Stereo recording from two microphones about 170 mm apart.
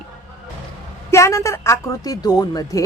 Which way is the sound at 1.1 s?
15° left (ahead or behind).